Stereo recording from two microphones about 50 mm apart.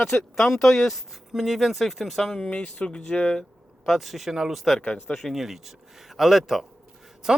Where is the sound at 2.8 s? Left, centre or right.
Centre.